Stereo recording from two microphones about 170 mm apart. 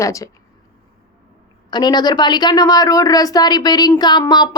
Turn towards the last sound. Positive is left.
turn(degrees=25)  # may be behind; listen again after turning